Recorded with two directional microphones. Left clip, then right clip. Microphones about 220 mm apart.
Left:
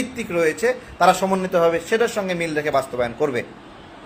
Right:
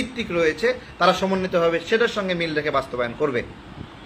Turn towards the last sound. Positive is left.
turn(degrees=-5)  # may be behind; listen again after turning